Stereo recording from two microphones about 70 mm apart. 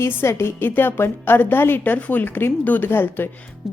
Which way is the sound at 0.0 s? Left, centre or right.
Left.